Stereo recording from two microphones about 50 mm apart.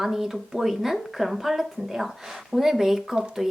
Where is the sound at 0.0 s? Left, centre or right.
Centre.